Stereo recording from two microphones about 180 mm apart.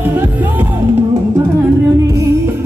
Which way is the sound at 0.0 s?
10° right (ahead or behind).